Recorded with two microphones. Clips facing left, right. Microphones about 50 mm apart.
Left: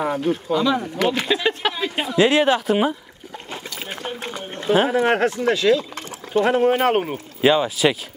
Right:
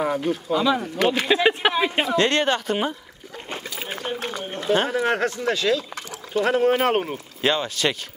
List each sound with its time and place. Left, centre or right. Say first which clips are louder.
0.0 s speech: left 2 dB; centre
1.3 s speech: right 2 dB; right
2.0 s speech: left 8 dB; centre
3.8 s a sound: even; centre
4.2 s a sound: right 1 dB; left
4.6 s speech: left 3 dB; centre
4.9 s speech: left 4 dB; left
6.8 s speech: left 2 dB; centre